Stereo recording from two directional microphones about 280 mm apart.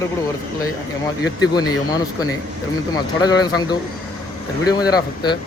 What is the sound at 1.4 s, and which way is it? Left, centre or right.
Speech, centre.